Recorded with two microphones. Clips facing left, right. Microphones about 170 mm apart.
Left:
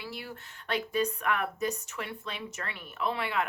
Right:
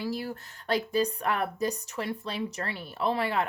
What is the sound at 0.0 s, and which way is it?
Speech, 40° right (ahead or behind).